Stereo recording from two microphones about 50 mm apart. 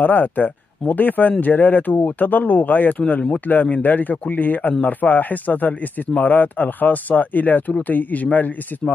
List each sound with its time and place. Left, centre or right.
0.0 s speech: left